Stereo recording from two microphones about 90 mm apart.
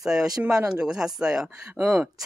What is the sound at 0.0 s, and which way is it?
Speech, 5° right (ahead or behind).